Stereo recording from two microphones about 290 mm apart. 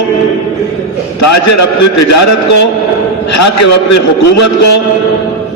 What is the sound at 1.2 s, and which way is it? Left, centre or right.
A man's voice, left.